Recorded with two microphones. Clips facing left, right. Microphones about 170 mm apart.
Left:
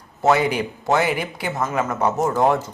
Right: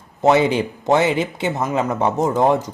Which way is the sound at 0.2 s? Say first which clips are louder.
Right 3 dB; 25° right (ahead or behind).